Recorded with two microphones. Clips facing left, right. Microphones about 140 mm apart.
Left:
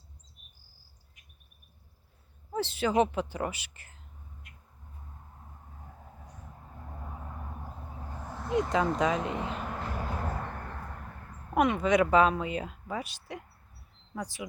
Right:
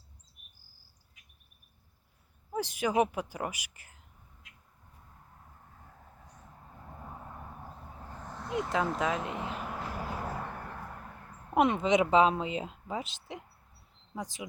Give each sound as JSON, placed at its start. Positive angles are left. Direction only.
{"t": 2.6, "sound": "a woman's voice", "side_deg": -15}
{"t": 4.4, "sound": "a sound", "side_deg": -90}
{"t": 8.1, "sound": "vehicle", "side_deg": 10}
{"t": 11.5, "sound": "a woman's voice", "side_deg": -25}